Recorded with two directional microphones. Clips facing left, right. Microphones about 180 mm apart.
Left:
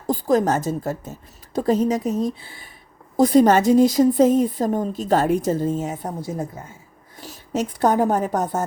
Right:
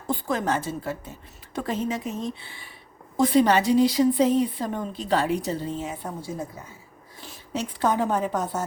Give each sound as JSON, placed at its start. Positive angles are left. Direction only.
{"t": 0.1, "sound": "a woman's voice", "side_deg": 40}
{"t": 7.2, "sound": "a woman's voice", "side_deg": 45}